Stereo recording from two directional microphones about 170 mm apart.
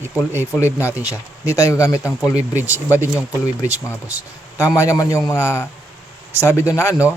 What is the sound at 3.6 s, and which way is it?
Speech, 15° left (ahead or behind).